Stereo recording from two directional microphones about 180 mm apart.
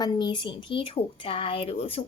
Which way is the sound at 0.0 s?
25° left (ahead or behind).